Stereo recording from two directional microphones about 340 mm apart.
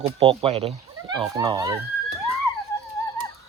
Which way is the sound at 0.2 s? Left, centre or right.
Centre.